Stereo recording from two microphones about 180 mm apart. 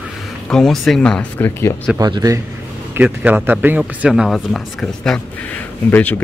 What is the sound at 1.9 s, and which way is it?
Speech, 20° right (ahead or behind).